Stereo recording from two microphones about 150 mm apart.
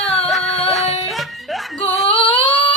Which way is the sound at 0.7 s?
Centre (ahead or behind).